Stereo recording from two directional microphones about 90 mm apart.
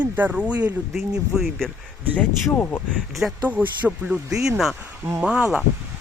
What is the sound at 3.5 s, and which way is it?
Speech, 15° right (ahead or behind).